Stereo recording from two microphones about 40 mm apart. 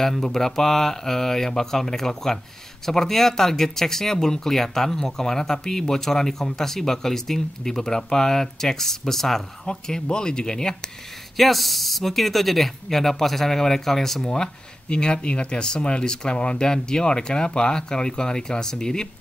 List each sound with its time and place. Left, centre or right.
0.0 s speech: centre
9.8 s speech: centre
11.3 s speech: centre
14.2 s speech: centre